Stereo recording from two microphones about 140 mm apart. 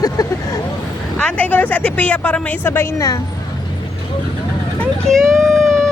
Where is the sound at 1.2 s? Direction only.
10° left (ahead or behind).